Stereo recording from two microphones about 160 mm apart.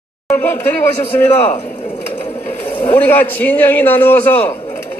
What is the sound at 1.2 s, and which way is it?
Speech, 45° left (ahead or behind).